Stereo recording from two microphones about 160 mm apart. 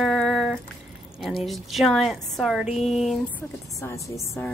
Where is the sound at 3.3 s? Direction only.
15° left (ahead or behind).